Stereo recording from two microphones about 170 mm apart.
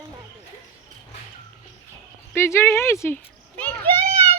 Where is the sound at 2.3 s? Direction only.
15° left (ahead or behind).